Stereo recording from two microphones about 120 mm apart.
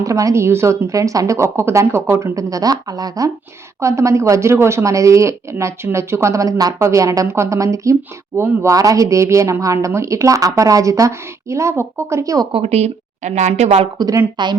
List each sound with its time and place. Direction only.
0.0 s speech: 25° right (ahead or behind)
12.5 s speech: 55° right (ahead or behind); by 13.5 s 75° right (ahead or behind)
14.0 s a woman's voice: 40° right (ahead or behind)